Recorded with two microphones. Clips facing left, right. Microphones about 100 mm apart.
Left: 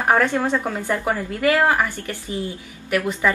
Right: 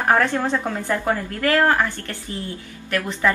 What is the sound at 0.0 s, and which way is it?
A woman's voice, 10° left (ahead or behind).